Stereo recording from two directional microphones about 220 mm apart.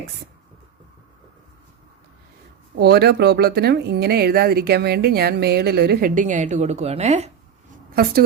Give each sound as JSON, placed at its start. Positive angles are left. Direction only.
{"t": 2.7, "sound": "speech", "side_deg": -45}